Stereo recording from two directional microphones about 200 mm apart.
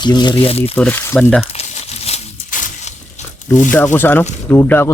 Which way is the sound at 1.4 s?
30° left (ahead or behind).